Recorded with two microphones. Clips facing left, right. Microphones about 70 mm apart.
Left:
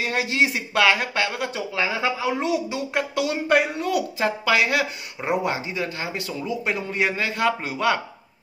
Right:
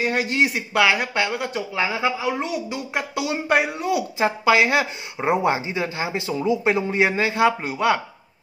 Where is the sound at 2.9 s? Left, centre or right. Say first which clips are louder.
Left 1 dB; centre.